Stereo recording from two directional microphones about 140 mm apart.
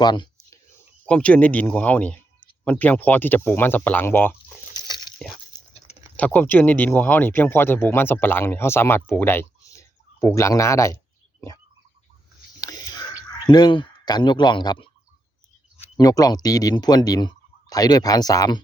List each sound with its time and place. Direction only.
0.0 s whispering: 30° left (ahead or behind)
1.0 s speech: 10° left (ahead or behind)
5.2 s a sound: 5° left (ahead or behind)
6.1 s speech: 10° left (ahead or behind)
13.4 s speech: 30° left (ahead or behind)
16.0 s speech: 25° left (ahead or behind)